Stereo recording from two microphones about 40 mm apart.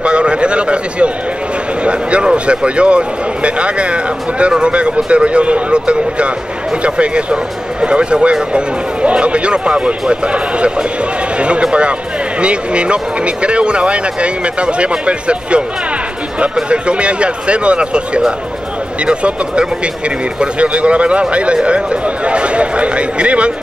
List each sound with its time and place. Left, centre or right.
0.0 s a sound: right
1.8 s speech: right
16.6 s speech: right